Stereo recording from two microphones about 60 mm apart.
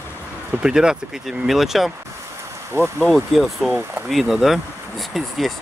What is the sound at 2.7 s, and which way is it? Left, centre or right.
Speech, right.